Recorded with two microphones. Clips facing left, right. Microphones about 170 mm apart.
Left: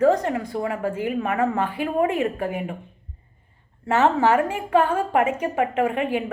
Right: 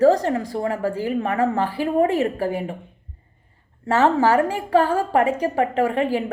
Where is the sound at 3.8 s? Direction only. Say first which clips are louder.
Right 1 dB; 35° right (ahead or behind).